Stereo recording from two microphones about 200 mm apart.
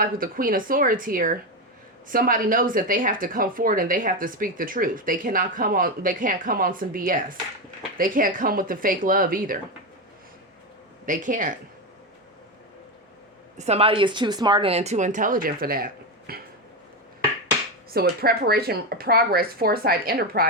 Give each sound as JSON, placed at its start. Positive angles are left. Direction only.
{"t": 0.0, "sound": "a woman's voice", "side_deg": -45}
{"t": 11.0, "sound": "speech", "side_deg": -40}
{"t": 13.6, "sound": "speech", "side_deg": -30}
{"t": 17.9, "sound": "a woman's voice", "side_deg": -50}